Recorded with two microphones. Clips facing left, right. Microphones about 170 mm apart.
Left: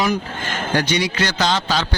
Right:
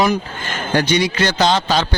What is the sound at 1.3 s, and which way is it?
Speech, 25° right (ahead or behind).